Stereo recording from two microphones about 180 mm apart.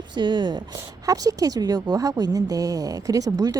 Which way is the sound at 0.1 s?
25° right (ahead or behind).